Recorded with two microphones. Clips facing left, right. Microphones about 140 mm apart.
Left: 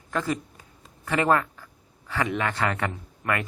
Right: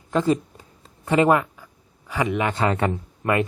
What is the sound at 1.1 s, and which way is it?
Speech, 20° right (ahead or behind).